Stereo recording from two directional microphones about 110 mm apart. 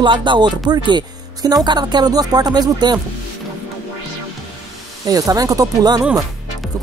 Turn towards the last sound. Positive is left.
turn(degrees=-35)  # may be behind; listen again after turning